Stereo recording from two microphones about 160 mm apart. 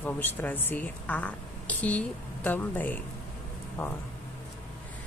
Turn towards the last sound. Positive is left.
turn(degrees=15)  # may be behind; listen again after turning